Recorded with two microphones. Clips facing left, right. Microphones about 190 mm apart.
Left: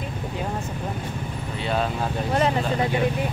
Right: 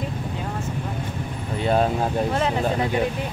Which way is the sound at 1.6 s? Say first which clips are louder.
Right 5 dB; 45° right (ahead or behind).